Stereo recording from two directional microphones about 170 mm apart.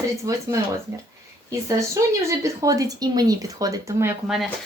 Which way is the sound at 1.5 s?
20° right (ahead or behind).